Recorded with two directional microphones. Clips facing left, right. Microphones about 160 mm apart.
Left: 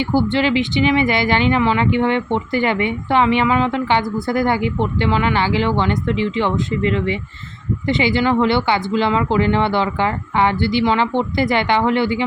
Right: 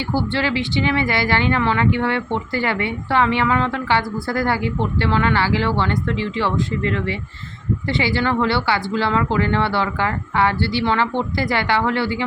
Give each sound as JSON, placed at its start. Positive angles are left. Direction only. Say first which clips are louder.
{"t": 0.3, "sound": "speech", "louder": "left 4 dB", "side_deg": 20}